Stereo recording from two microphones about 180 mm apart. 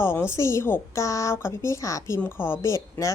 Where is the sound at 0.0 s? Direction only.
15° left (ahead or behind).